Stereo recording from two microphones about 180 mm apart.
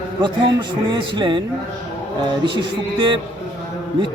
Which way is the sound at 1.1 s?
25° right (ahead or behind).